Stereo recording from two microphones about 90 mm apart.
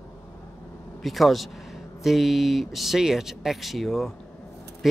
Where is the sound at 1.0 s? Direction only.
Centre (ahead or behind).